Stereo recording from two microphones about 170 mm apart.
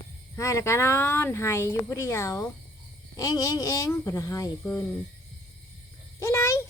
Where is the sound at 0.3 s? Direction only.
15° left (ahead or behind).